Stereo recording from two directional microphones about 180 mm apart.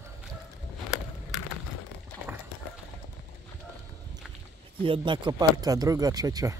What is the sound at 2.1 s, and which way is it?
Clip-clop, 10° left (ahead or behind).